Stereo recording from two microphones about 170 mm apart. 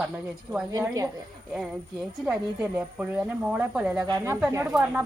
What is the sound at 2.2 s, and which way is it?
Speech, 10° right (ahead or behind).